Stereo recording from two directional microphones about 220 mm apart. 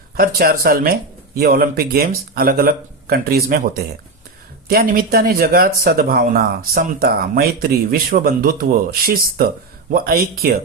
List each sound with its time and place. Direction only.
0.2 s speech: 40° right (ahead or behind)